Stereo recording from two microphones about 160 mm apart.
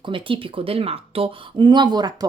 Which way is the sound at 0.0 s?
30° right (ahead or behind).